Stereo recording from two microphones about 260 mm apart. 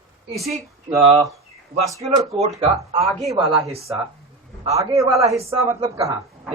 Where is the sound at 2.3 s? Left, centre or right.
Right.